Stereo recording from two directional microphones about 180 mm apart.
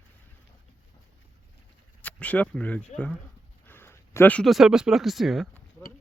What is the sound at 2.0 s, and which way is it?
Speech, 10° left (ahead or behind).